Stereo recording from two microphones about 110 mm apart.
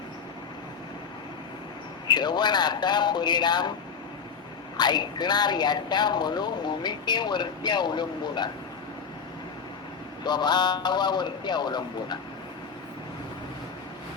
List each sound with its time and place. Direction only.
2.0 s a man's voice: 40° left (ahead or behind)
4.8 s a man's voice: 40° left (ahead or behind)
10.2 s a man's voice: 40° left (ahead or behind)